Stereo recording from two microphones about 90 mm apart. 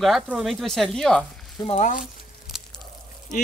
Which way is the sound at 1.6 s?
30° left (ahead or behind).